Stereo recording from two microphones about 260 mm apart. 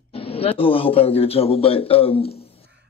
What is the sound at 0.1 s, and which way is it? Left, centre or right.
A man's voice, left.